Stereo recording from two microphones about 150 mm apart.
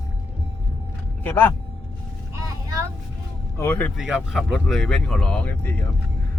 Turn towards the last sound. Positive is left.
turn(degrees=10)  # may be behind; listen again after turning